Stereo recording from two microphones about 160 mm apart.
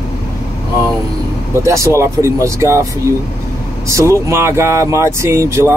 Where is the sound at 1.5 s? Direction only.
20° right (ahead or behind).